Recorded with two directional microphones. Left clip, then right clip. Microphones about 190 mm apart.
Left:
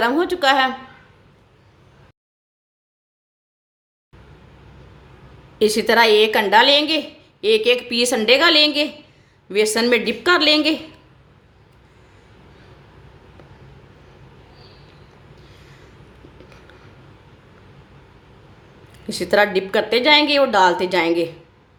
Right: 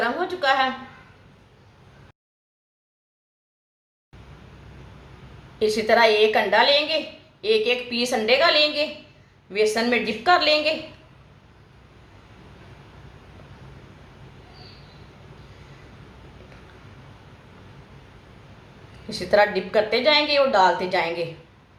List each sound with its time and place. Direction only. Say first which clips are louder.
0.0 s a woman's voice: left 6 dB; 55° left (ahead or behind)
5.5 s a woman's voice: left 3 dB; 55° left (ahead or behind)
19.0 s a woman's voice: left 2 dB; 60° left (ahead or behind)